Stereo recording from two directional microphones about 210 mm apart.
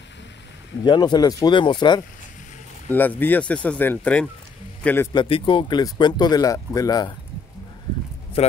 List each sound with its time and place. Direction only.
0.8 s speech: 20° left (ahead or behind)
2.9 s speech: 10° left (ahead or behind)
5.1 s speech: 25° left (ahead or behind)
8.4 s speech: 30° left (ahead or behind)